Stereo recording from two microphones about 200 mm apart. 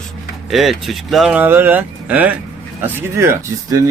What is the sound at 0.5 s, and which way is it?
Speech, centre (ahead or behind).